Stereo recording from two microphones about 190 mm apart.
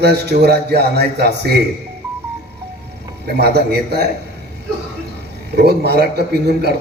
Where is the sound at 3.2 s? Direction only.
55° right (ahead or behind).